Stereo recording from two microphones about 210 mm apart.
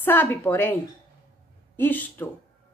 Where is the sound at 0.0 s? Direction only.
10° left (ahead or behind).